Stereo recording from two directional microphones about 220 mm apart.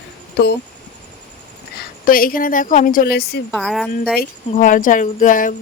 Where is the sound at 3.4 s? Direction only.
Centre (ahead or behind).